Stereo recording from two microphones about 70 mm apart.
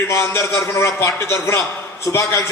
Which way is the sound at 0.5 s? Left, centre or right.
Left.